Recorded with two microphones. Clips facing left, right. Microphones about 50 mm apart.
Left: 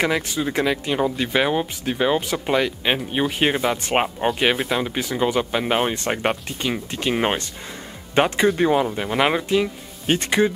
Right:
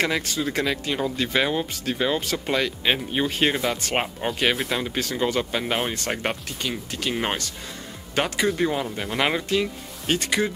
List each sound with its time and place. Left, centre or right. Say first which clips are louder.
0.0 s speech: left 3 dB; centre
4.6 s speech: left 3 dB; centre
6.6 s speech: left 3 dB; left
8.9 s speech: left 4 dB; centre
10.1 s speech: left 5 dB; left